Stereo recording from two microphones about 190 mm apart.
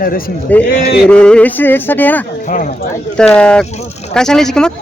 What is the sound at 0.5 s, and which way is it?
Speech, 10° left (ahead or behind).